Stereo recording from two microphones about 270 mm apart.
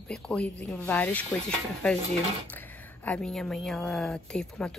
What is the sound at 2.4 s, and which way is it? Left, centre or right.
Speech, centre.